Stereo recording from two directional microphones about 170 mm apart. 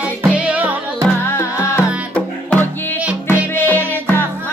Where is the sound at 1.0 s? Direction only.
15° left (ahead or behind).